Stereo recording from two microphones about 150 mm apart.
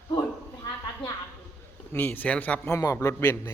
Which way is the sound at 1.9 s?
10° left (ahead or behind).